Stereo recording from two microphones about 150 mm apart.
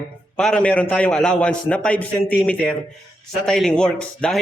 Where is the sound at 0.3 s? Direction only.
5° left (ahead or behind).